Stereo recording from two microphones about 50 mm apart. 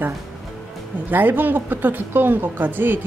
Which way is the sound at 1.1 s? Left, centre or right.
Right.